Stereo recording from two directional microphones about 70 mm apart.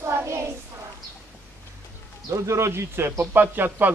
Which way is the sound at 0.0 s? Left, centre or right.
Right.